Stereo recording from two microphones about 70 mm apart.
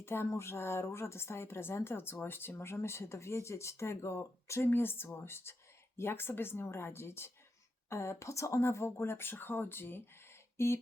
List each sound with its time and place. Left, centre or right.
0.0 s speech: left